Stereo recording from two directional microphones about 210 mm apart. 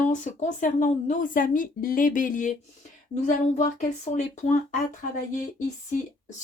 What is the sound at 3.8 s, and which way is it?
Speech, 35° left (ahead or behind).